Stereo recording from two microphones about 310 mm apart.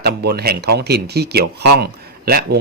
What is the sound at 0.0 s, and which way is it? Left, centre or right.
Speech, right.